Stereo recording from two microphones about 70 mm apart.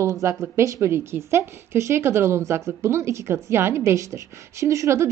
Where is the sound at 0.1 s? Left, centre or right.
Right.